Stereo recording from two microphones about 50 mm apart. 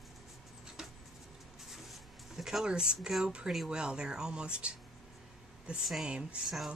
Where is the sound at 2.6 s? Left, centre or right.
Centre.